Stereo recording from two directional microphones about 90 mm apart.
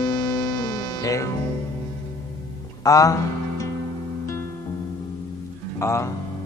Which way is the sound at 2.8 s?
40° left (ahead or behind).